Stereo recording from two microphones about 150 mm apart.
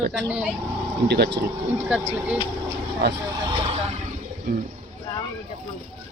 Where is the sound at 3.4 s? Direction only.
35° right (ahead or behind).